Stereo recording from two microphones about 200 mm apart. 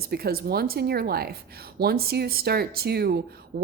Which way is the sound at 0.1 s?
50° right (ahead or behind).